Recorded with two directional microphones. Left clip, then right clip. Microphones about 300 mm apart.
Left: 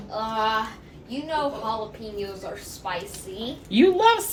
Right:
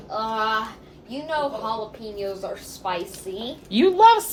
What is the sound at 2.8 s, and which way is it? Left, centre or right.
Speech, right.